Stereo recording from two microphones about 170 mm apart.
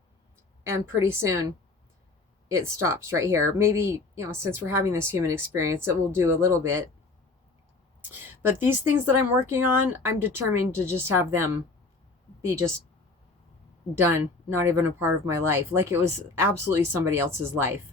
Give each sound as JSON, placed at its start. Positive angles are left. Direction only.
{"t": 0.7, "sound": "speech", "side_deg": -15}
{"t": 2.6, "sound": "speech", "side_deg": -15}
{"t": 8.0, "sound": "speech", "side_deg": -10}
{"t": 13.9, "sound": "speech", "side_deg": -15}